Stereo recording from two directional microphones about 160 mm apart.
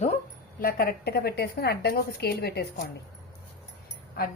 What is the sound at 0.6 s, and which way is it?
A woman's voice, 65° left (ahead or behind).